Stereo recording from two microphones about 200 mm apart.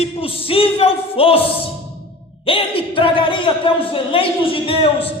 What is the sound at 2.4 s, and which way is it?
Speech, 25° left (ahead or behind).